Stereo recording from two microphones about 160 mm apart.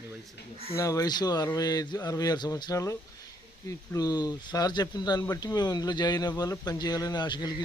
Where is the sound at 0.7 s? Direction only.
20° left (ahead or behind).